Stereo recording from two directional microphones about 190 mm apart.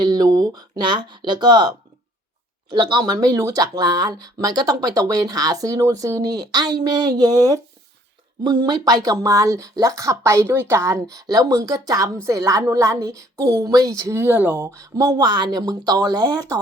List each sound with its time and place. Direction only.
0.0 s speech: 20° right (ahead or behind)